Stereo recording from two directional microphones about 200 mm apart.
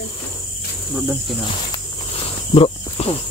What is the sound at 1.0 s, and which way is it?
Speech, 5° right (ahead or behind).